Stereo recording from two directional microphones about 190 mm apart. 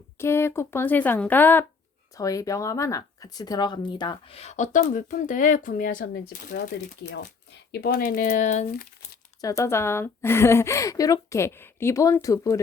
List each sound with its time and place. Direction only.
0.2 s a woman's voice: 15° left (ahead or behind); by 8.9 s 40° left (ahead or behind)
9.4 s a woman's voice: 15° left (ahead or behind)